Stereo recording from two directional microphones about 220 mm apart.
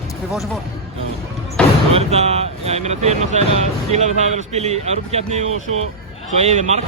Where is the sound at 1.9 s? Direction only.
30° right (ahead or behind).